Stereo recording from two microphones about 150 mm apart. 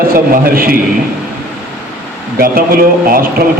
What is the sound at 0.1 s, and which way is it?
Speech, 75° right (ahead or behind).